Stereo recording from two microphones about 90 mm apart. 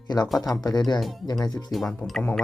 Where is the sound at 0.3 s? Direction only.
45° left (ahead or behind).